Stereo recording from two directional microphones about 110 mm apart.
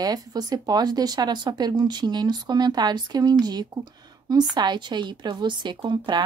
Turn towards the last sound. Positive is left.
turn(degrees=-45)  # may be behind; listen again after turning